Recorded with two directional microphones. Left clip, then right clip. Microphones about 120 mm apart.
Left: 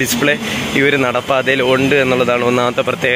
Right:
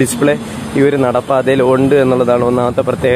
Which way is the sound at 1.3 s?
40° right (ahead or behind).